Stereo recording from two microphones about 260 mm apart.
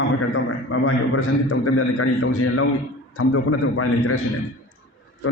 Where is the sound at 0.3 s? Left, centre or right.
Left.